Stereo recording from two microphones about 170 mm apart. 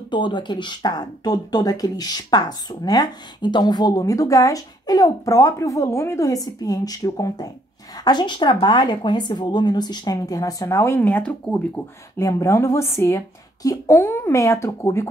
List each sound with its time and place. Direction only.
0.1 s speech: 25° left (ahead or behind)